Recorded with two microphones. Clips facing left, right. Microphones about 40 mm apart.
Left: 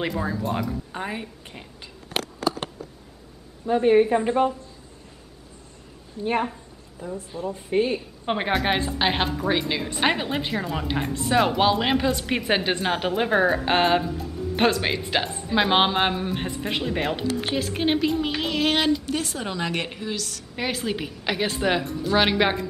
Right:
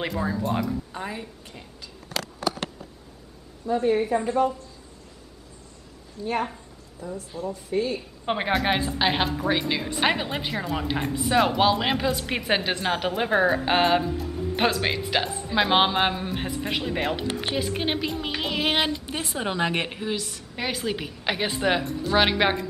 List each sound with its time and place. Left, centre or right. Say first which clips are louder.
0.0 s a woman's voice: left 1 dB; centre
0.9 s speech: left 2 dB; left
3.6 s a woman's voice: left 5 dB; left
6.2 s a woman's voice: left 3 dB; left
7.7 s a woman's voice: left 4 dB; left
8.3 s a woman's voice: left 1 dB; centre
20.5 s a woman's voice: left 1 dB; centre